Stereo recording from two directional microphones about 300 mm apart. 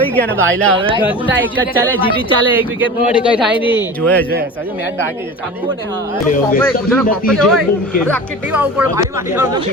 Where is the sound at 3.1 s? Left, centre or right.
Centre.